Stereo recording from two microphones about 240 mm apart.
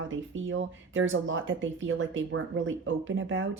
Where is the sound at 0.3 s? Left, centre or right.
Right.